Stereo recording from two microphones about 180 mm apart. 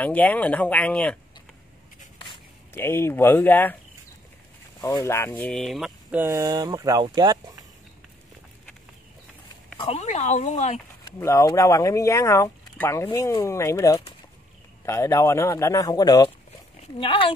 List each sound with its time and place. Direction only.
0.0 s speech: 10° left (ahead or behind)
2.7 s speech: 15° left (ahead or behind)
4.8 s speech: 15° left (ahead or behind); by 6.2 s centre (ahead or behind)
6.2 s speech: 15° right (ahead or behind)
9.8 s speech: 35° left (ahead or behind)
11.1 s speech: 15° left (ahead or behind)